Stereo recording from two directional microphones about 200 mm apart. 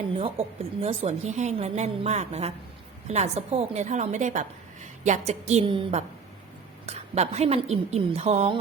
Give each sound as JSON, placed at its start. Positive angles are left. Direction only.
{"t": 0.2, "sound": "a woman's voice", "side_deg": -30}